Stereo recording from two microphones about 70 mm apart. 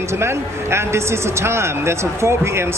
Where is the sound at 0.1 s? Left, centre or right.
Right.